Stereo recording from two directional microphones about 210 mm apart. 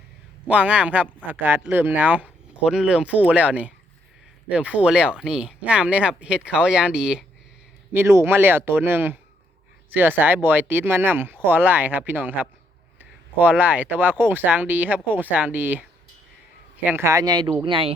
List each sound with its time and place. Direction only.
0.4 s speech: 5° right (ahead or behind); by 17.9 s 25° right (ahead or behind)